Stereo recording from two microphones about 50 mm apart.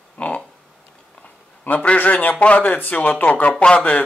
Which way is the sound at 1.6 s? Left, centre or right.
Left.